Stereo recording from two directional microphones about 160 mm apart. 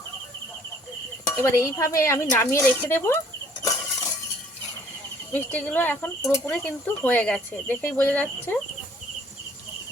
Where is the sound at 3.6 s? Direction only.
25° left (ahead or behind).